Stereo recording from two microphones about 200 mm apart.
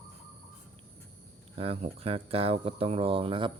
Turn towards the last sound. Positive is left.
turn(degrees=-25)  # may be behind; listen again after turning